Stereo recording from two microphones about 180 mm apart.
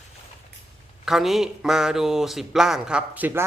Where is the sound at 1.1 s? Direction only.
Centre (ahead or behind).